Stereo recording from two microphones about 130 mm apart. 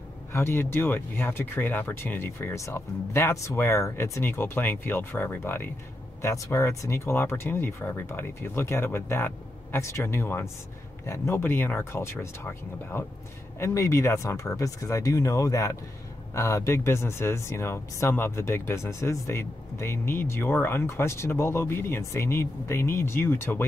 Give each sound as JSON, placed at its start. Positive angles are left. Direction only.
{"t": 0.3, "sound": "speech", "side_deg": 20}